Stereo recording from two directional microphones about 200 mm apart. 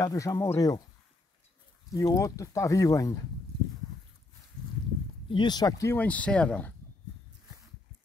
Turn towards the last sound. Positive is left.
turn(degrees=5)  # may be behind; listen again after turning